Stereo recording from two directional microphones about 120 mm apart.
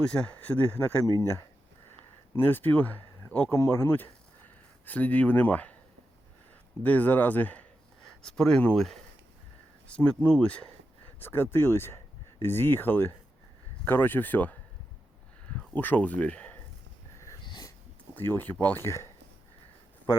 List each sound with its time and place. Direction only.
0.0 s speech: 10° left (ahead or behind)
6.8 s speech: 15° left (ahead or behind)
17.4 s wheeze: 40° left (ahead or behind)
18.1 s speech: 20° left (ahead or behind)